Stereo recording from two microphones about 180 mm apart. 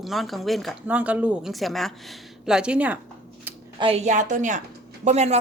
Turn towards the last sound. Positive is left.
turn(degrees=-35)  # may be behind; listen again after turning